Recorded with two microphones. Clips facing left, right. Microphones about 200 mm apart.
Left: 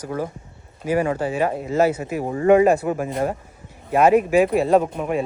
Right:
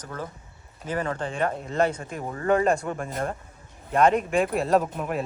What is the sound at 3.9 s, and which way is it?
A man's voice, 5° left (ahead or behind).